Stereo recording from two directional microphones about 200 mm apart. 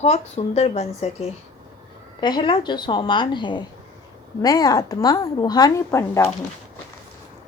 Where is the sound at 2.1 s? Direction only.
20° left (ahead or behind).